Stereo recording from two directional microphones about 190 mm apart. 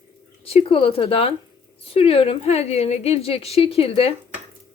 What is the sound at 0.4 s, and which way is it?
A woman's voice, 30° left (ahead or behind).